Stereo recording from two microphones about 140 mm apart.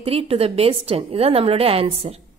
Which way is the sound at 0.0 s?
45° right (ahead or behind).